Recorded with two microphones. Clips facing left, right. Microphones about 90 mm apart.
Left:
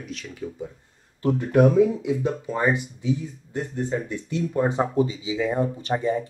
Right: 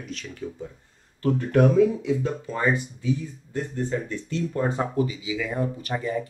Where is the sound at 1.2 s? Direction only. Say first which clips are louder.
Left 2 dB; 15° left (ahead or behind).